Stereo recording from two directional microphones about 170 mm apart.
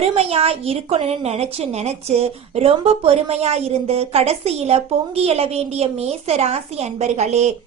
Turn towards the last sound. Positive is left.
turn(degrees=-40)  # may be behind; listen again after turning